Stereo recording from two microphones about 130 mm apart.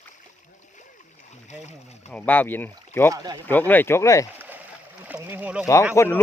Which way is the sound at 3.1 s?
30° right (ahead or behind).